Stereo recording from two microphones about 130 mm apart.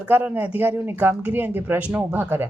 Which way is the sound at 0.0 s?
15° right (ahead or behind).